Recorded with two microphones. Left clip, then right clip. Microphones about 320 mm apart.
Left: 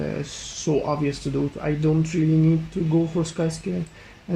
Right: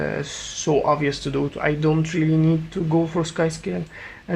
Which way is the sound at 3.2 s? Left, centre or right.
Right.